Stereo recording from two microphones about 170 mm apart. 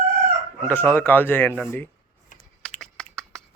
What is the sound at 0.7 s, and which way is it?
Speech, 10° left (ahead or behind).